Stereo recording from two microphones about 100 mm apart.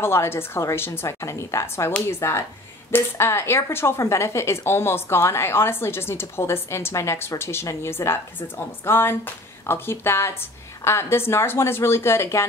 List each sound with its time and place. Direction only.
0.0 s speech: 25° left (ahead or behind)